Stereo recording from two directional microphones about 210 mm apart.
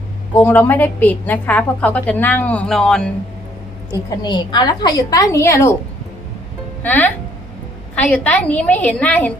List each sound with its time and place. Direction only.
0.3 s a woman's voice: 10° left (ahead or behind)
4.2 s a woman's voice: 20° left (ahead or behind)
6.8 s a woman's voice: 10° left (ahead or behind)